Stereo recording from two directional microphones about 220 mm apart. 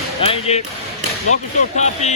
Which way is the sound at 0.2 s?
30° left (ahead or behind).